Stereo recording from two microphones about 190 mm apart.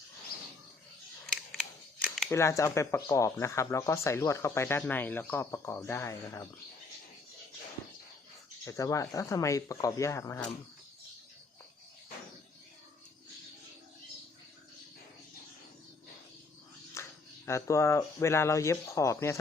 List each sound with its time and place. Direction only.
2.0 s a sound: centre (ahead or behind)
2.3 s speech: 15° left (ahead or behind)
8.6 s speech: 15° left (ahead or behind)
16.9 s speech: 15° left (ahead or behind)